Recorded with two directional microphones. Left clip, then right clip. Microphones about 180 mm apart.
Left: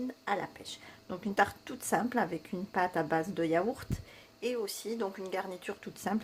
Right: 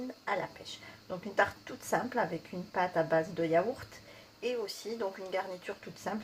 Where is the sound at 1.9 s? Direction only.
45° left (ahead or behind).